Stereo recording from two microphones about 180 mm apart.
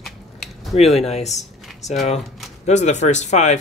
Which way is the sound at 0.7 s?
35° left (ahead or behind).